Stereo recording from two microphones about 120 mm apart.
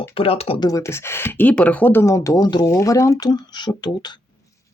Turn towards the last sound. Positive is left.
turn(degrees=35)  # may be behind; listen again after turning